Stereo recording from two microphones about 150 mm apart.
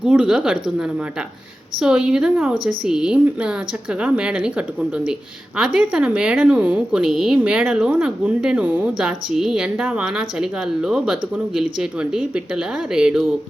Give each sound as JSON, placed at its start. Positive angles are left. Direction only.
{"t": 0.0, "sound": "a woman's voice", "side_deg": -5}